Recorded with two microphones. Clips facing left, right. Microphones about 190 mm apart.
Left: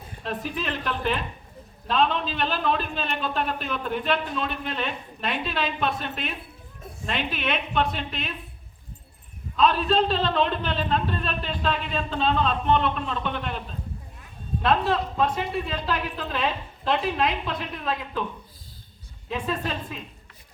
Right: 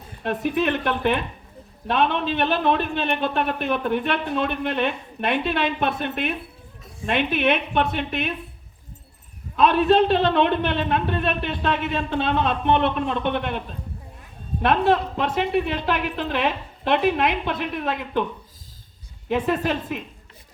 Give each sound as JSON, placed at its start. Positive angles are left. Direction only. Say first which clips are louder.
{"t": 0.2, "sound": "speech", "louder": "right 8 dB", "side_deg": -60}
{"t": 9.6, "sound": "speech", "louder": "right 5 dB", "side_deg": -60}
{"t": 14.6, "sound": "speech", "louder": "right 4 dB", "side_deg": -60}
{"t": 19.3, "sound": "a woman's voice", "louder": "right 7 dB", "side_deg": -65}